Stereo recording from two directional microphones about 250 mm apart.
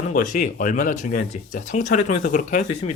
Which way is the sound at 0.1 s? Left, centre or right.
Left.